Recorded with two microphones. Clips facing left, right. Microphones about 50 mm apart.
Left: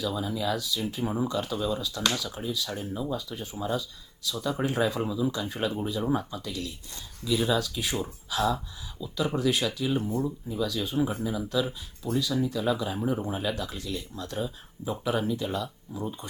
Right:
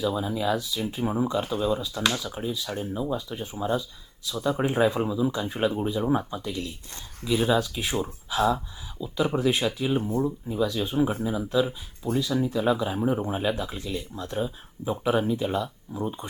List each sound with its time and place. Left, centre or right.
0.0 s speech: right